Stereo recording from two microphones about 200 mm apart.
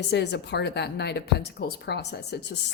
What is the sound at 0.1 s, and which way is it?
A woman's voice, 55° left (ahead or behind).